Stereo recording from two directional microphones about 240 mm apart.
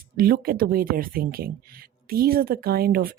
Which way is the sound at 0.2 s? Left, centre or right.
Right.